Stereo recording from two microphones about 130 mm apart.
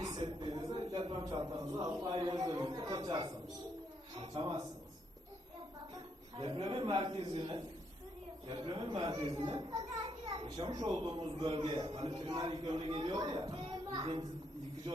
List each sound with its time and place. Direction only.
0.0 s a man's voice: 35° right (ahead or behind)
5.9 s a man's voice: 40° right (ahead or behind)